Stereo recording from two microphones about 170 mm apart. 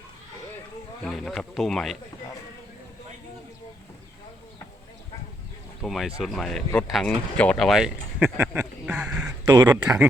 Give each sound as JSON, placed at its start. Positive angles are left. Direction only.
{"t": 1.0, "sound": "speech", "side_deg": 5}
{"t": 5.8, "sound": "speech", "side_deg": 0}
{"t": 9.5, "sound": "speech", "side_deg": -25}
{"t": 9.8, "sound": "speech", "side_deg": -5}